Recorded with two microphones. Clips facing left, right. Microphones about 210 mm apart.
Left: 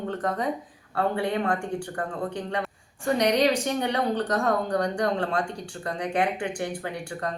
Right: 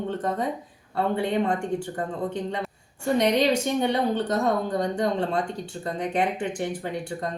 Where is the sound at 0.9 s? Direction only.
25° right (ahead or behind).